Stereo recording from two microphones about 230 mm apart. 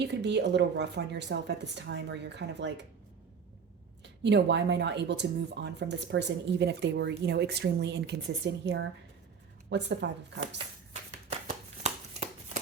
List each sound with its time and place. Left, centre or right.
0.0 s speech: right
4.2 s speech: right
11.3 s a sound: right